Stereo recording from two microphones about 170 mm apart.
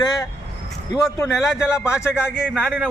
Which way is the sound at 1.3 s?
5° right (ahead or behind).